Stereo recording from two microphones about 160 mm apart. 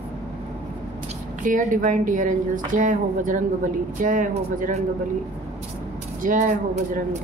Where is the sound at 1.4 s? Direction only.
55° right (ahead or behind).